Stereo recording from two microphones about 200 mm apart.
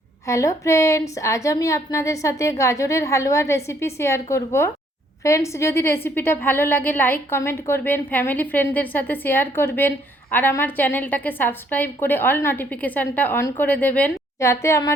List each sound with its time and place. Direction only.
0.3 s a woman's voice: 15° left (ahead or behind)